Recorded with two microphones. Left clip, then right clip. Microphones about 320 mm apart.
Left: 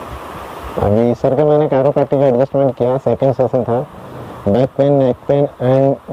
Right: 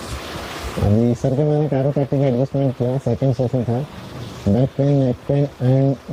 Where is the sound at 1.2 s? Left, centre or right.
Left.